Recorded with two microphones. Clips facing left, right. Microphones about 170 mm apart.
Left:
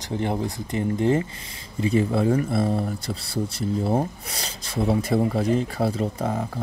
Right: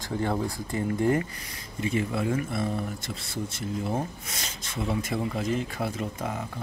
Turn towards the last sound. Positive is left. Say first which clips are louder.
# left 6 dB
turn(degrees=35)  # may be behind; listen again after turning